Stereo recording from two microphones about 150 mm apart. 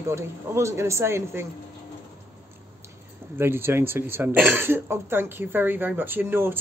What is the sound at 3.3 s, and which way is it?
Speech, 15° right (ahead or behind).